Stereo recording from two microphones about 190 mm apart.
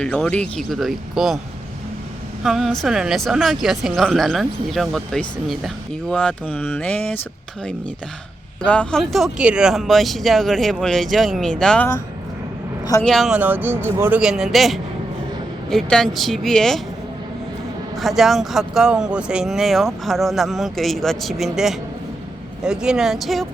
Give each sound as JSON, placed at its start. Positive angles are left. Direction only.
{"t": 0.0, "sound": "speech", "side_deg": 5}
{"t": 2.4, "sound": "speech", "side_deg": 0}
{"t": 8.6, "sound": "speech", "side_deg": 5}
{"t": 13.1, "sound": "speech", "side_deg": 0}
{"t": 17.9, "sound": "speech", "side_deg": 0}